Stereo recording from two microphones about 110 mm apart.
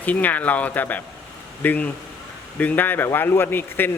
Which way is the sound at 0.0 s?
15° left (ahead or behind).